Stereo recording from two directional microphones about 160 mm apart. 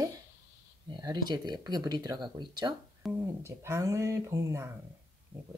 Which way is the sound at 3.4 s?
15° right (ahead or behind).